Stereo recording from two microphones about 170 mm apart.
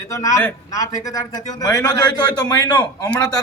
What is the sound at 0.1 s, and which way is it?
A man's voice, 20° left (ahead or behind).